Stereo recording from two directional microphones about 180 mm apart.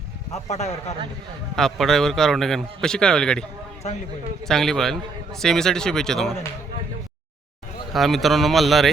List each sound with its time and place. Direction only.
0.4 s a man's voice: 40° left (ahead or behind)
1.5 s a man's voice: centre (ahead or behind)
3.8 s a man's voice: 40° left (ahead or behind)
4.4 s a man's voice: centre (ahead or behind)
7.9 s a man's voice: centre (ahead or behind)